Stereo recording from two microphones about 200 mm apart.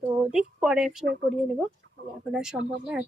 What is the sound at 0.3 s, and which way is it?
Speech, 5° right (ahead or behind).